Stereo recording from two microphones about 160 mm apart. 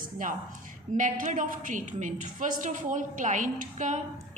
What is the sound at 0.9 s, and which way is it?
A woman's voice, 50° right (ahead or behind).